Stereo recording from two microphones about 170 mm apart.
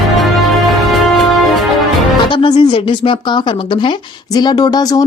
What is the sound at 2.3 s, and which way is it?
Speech, 30° left (ahead or behind).